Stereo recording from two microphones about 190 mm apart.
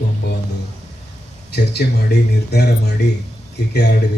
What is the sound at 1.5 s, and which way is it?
Speech, 60° left (ahead or behind).